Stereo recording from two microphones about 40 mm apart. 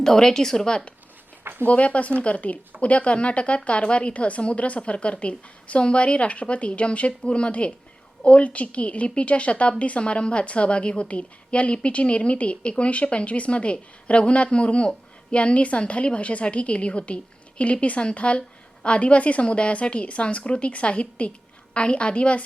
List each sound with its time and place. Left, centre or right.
0.0 s speech: centre
1.6 s a woman's voice: left